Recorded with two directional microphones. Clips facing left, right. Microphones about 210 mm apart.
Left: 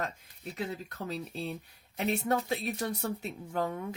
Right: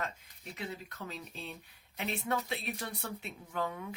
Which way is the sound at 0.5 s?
40° left (ahead or behind).